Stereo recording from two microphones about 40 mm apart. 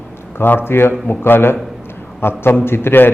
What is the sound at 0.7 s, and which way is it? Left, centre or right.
A man's voice, left.